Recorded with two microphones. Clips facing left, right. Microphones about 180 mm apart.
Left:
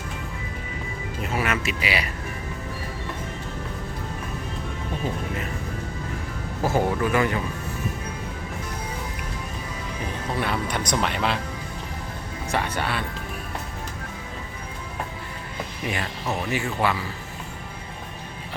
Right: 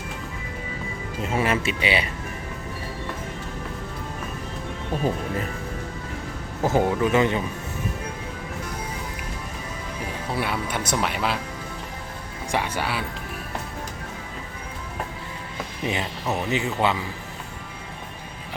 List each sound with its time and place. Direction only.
1.2 s speech: 25° right (ahead or behind)
6.6 s speech: 20° right (ahead or behind)
10.3 s speech: 5° right (ahead or behind)
12.5 s speech: 10° right (ahead or behind)
15.9 s speech: 20° right (ahead or behind)